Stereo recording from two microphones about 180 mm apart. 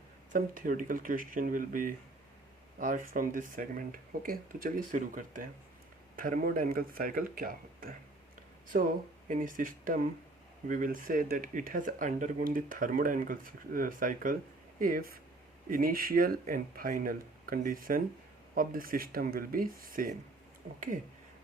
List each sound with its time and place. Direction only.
0.3 s speech: 50° right (ahead or behind)